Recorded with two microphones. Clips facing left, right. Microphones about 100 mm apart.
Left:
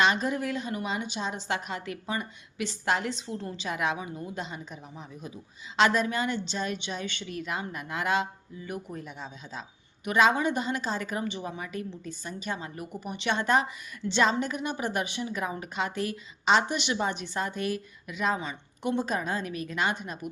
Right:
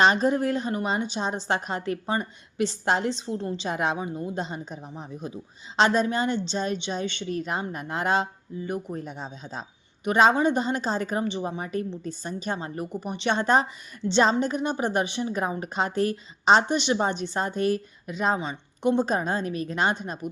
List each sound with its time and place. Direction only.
0.0 s a woman's voice: 35° right (ahead or behind)